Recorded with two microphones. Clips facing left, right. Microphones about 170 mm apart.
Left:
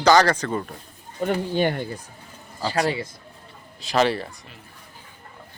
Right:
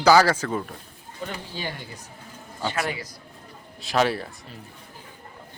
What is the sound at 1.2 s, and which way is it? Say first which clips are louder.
Speech: left 11 dB; 55° left (ahead or behind).